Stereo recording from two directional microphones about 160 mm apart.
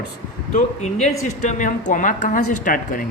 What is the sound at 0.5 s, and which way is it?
A man's voice, 45° left (ahead or behind).